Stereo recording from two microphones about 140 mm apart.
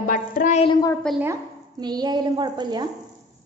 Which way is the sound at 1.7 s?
30° right (ahead or behind).